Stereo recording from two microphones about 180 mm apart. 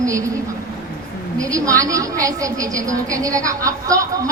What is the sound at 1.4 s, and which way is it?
A woman's voice, 20° right (ahead or behind).